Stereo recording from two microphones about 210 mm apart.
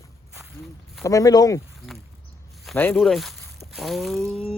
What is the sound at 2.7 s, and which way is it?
Speech, 10° left (ahead or behind).